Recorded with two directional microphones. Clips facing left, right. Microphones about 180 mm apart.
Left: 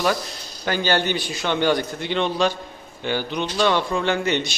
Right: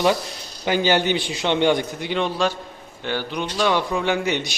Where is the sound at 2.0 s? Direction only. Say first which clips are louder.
Left 1 dB; 5° right (ahead or behind).